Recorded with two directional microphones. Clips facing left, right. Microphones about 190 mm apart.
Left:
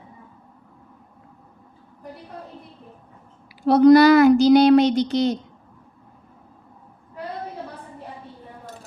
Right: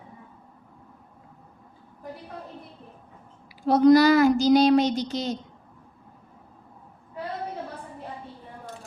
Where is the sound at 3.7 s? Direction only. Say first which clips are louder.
Left 4 dB; 65° left (ahead or behind).